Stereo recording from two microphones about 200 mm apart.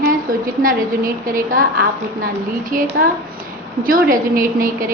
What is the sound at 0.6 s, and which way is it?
A woman's voice, 45° right (ahead or behind).